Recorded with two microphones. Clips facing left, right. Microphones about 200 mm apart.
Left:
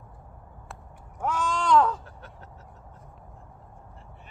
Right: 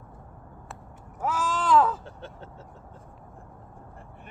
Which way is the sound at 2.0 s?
25° right (ahead or behind).